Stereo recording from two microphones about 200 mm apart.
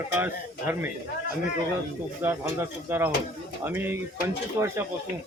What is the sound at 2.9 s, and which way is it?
A man's voice, 10° right (ahead or behind).